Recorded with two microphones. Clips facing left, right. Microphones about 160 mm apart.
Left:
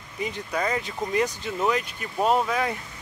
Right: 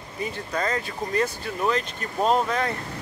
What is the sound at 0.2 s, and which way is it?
Speech, 15° left (ahead or behind).